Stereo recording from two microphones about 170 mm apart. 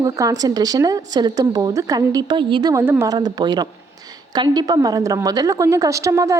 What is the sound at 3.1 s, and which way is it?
A woman's voice, 25° right (ahead or behind).